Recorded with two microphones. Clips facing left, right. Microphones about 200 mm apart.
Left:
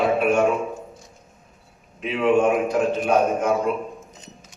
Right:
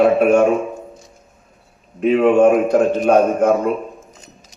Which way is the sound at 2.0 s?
45° right (ahead or behind).